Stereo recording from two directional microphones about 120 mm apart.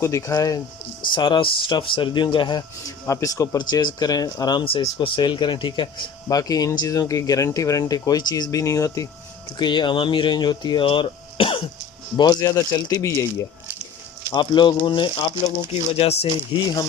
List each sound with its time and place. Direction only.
0.0 s speech: 25° left (ahead or behind)
1.1 s speech: 45° left (ahead or behind)
6.2 s speech: 30° left (ahead or behind)
9.6 s speech: 40° left (ahead or behind)
12.1 s speech: 35° left (ahead or behind)
14.3 s speech: 40° left (ahead or behind); by 16.3 s 55° left (ahead or behind)
16.5 s speech: 40° left (ahead or behind)